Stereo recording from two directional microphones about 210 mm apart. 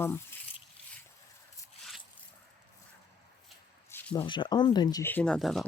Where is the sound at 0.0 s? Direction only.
10° left (ahead or behind).